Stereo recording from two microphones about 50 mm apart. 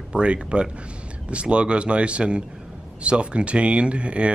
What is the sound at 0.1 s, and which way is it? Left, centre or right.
Speech, right.